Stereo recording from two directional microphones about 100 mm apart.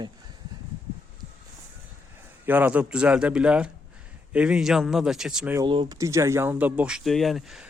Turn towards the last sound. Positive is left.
turn(degrees=0)  # may be behind; listen again after turning